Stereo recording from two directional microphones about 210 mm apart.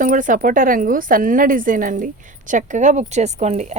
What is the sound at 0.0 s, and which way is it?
Speech, 40° right (ahead or behind).